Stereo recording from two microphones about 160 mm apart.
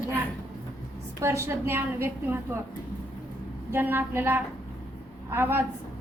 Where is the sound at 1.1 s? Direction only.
15° right (ahead or behind).